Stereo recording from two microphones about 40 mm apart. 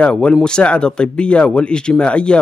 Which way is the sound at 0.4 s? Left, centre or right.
Left.